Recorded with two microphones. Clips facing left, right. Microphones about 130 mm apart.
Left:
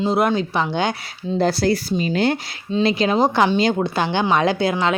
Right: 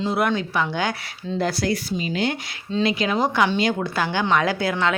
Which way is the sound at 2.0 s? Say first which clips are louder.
Left 7 dB; 40° left (ahead or behind).